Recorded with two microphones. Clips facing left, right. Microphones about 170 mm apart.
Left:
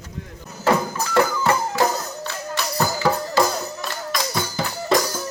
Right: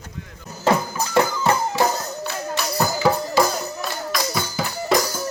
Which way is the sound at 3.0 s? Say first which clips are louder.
Right 1 dB; 10° right (ahead or behind).